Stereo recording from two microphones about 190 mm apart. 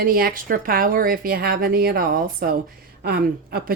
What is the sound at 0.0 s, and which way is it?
A woman's voice, 50° right (ahead or behind).